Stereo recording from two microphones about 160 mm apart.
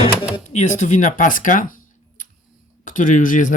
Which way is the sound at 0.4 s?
45° left (ahead or behind).